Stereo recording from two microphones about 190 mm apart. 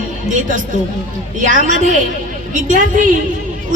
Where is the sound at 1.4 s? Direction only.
40° right (ahead or behind).